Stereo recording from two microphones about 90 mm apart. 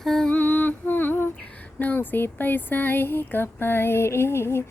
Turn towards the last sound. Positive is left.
turn(degrees=30)  # may be behind; listen again after turning